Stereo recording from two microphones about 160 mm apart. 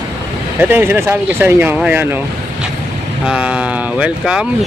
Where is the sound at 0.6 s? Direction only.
15° right (ahead or behind).